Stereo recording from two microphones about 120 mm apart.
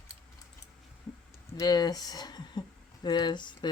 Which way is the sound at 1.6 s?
35° left (ahead or behind).